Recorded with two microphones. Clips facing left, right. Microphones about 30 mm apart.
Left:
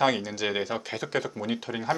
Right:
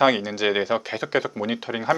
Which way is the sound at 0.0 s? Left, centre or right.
Centre.